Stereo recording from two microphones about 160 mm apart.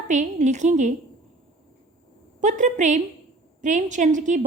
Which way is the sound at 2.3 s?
50° right (ahead or behind).